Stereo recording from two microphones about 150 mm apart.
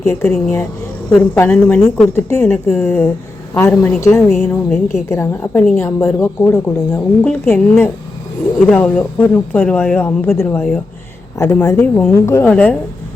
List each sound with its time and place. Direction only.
0.0 s speech: 15° left (ahead or behind)
12.5 s speech: 10° left (ahead or behind)